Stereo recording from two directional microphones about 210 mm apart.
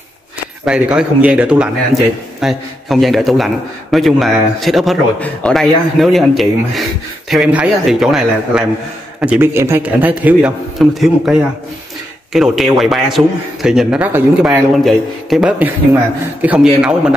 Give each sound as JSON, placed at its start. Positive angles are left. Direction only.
{"t": 0.7, "sound": "a man's voice", "side_deg": -5}